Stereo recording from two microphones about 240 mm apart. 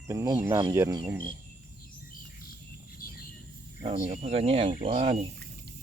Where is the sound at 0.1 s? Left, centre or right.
Centre.